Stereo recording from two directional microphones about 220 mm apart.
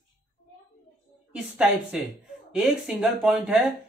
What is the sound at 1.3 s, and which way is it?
Speech, 5° right (ahead or behind).